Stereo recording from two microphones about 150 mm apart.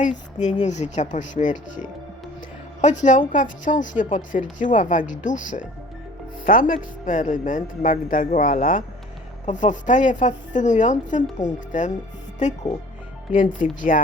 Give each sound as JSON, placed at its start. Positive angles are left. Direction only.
{"t": 0.0, "sound": "a woman's voice", "side_deg": 55}